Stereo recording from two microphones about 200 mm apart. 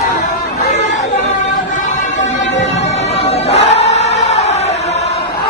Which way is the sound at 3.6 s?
35° left (ahead or behind).